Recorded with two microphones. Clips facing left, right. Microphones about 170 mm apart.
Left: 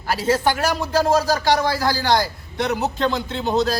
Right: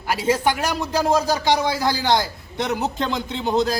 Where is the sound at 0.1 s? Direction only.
15° right (ahead or behind).